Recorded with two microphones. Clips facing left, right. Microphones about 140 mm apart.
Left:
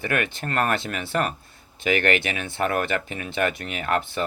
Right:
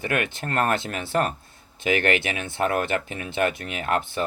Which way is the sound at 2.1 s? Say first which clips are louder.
Even; 50° left (ahead or behind).